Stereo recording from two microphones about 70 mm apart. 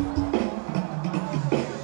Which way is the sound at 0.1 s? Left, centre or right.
Centre.